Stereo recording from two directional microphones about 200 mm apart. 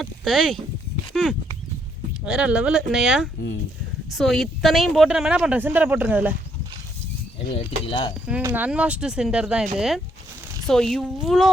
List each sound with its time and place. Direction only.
0.0 s speech: centre (ahead or behind)
7.9 s speech: 25° left (ahead or behind)
8.3 s speech: 10° right (ahead or behind)